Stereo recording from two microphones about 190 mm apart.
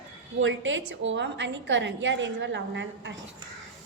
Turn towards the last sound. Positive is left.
turn(degrees=-70)  # may be behind; listen again after turning